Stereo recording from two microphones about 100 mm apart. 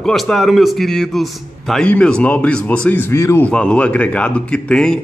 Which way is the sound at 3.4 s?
10° left (ahead or behind).